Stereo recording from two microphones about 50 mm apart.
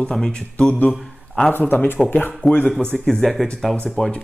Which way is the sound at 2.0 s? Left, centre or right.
Left.